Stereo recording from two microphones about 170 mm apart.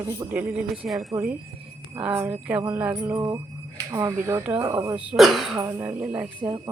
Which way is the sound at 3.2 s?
20° right (ahead or behind).